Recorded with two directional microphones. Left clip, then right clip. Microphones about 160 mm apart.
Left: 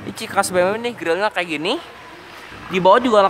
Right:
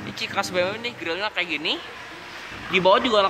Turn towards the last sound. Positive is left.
turn(degrees=50)  # may be behind; listen again after turning